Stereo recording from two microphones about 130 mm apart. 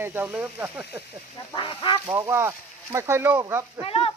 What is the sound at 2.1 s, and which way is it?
Speech, 20° right (ahead or behind).